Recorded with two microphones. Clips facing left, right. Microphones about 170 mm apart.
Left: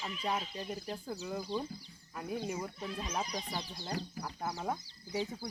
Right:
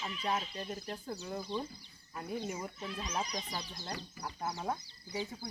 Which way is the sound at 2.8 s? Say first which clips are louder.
Left 1 dB; 10° left (ahead or behind).